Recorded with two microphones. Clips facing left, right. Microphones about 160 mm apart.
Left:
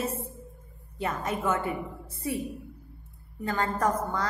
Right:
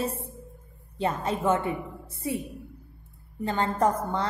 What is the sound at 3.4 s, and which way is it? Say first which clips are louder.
Speech: right 3 dB; 30° right (ahead or behind).